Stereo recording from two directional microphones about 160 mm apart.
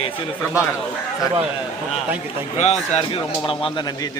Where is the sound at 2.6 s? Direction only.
45° left (ahead or behind).